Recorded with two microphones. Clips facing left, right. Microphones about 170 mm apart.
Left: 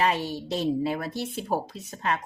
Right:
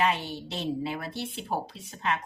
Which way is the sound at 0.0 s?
40° left (ahead or behind).